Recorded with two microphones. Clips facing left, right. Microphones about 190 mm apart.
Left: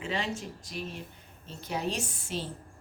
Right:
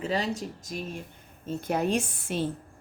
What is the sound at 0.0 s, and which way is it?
Speech, 40° right (ahead or behind).